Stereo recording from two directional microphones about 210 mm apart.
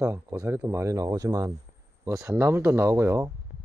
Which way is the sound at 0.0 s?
15° right (ahead or behind).